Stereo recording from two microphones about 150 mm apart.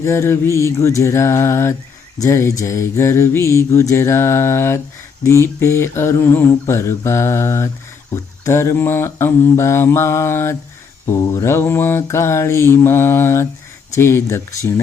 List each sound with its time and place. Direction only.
0.0 s mantra: 20° left (ahead or behind)